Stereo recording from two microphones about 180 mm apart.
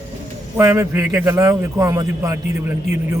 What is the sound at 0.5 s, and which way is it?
A man's voice, 15° right (ahead or behind).